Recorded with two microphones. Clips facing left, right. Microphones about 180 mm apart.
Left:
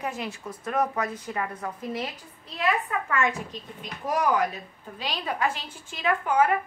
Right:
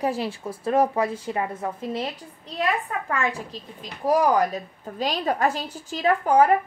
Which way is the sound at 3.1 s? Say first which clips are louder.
Even; 35° right (ahead or behind).